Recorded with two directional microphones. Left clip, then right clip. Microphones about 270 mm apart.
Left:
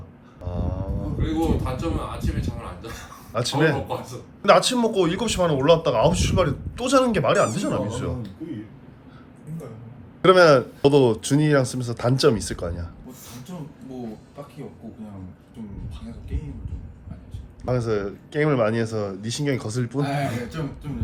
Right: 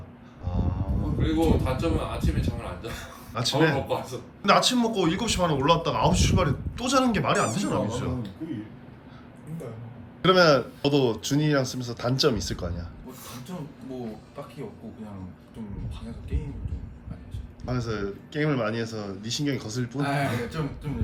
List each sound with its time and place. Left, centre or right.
0.4 s speech: centre
10.2 s speech: left
17.7 s speech: centre
20.0 s speech: centre